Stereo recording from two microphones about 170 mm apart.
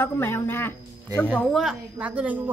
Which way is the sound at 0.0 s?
15° left (ahead or behind).